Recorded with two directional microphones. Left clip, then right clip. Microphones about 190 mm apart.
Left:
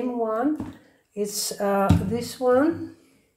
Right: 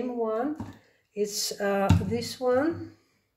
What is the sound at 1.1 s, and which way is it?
Speech, 5° right (ahead or behind).